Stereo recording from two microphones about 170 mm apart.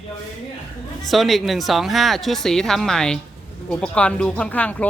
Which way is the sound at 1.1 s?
Centre (ahead or behind).